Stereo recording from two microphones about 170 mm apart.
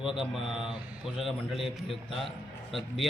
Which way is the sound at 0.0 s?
Centre (ahead or behind).